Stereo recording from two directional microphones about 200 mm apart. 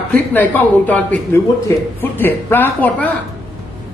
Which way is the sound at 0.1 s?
10° left (ahead or behind).